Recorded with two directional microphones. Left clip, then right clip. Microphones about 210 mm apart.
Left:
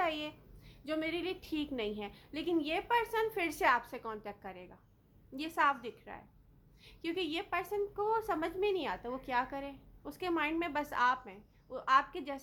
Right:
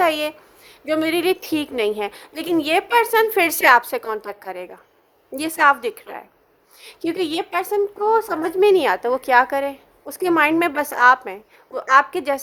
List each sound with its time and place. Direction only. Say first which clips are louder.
0.0 s a woman's voice: right 16 dB; 50° right (ahead or behind)